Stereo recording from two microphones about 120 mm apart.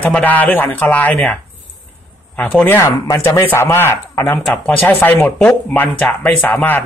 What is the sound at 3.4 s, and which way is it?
Speech, 20° left (ahead or behind).